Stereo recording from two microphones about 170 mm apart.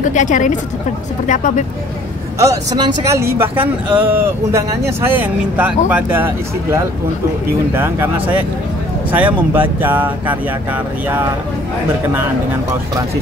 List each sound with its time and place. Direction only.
0.0 s a woman's voice: 45° left (ahead or behind)
2.3 s speech: 20° right (ahead or behind)